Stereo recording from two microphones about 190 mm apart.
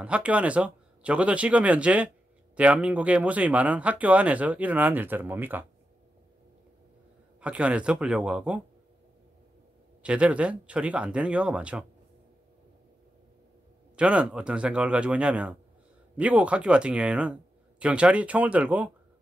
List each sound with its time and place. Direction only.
0.0 s speech: 5° right (ahead or behind)
7.3 s speech: 5° right (ahead or behind)
10.0 s speech: 5° right (ahead or behind)
13.9 s speech: 5° right (ahead or behind)